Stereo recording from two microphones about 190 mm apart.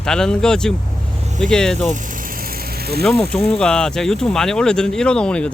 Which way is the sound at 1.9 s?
45° right (ahead or behind).